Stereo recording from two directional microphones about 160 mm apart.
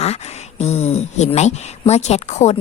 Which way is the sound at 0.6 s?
45° left (ahead or behind).